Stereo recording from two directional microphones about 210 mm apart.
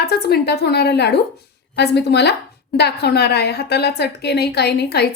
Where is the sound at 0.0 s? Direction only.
50° left (ahead or behind).